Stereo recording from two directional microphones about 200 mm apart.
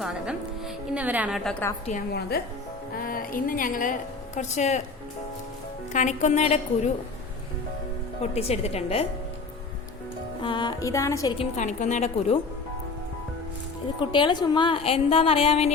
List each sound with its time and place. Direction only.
0.0 s a woman's voice: 5° right (ahead or behind)
2.3 s a woman's voice: 50° left (ahead or behind); by 4.8 s 35° left (ahead or behind)
5.9 s a woman's voice: 35° left (ahead or behind)
8.2 s a woman's voice: 30° left (ahead or behind)
10.4 s speech: 20° left (ahead or behind)
11.3 s a woman's voice: 35° left (ahead or behind)
14.1 s a woman's voice: 25° left (ahead or behind)